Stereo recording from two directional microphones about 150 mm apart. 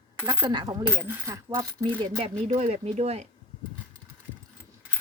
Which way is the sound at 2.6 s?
45° right (ahead or behind).